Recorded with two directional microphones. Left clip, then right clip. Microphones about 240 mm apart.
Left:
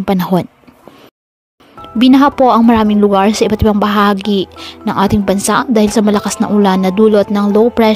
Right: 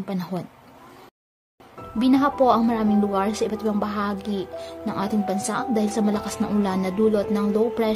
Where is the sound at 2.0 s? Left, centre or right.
Left.